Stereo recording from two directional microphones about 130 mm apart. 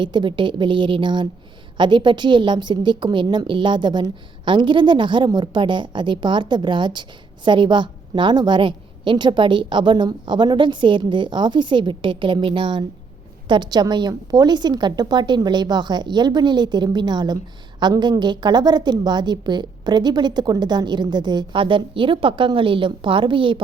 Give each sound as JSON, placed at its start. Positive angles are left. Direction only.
{"t": 0.0, "sound": "a woman's voice", "side_deg": -35}